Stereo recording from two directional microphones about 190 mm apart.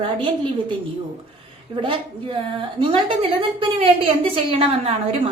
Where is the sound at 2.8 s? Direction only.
25° right (ahead or behind).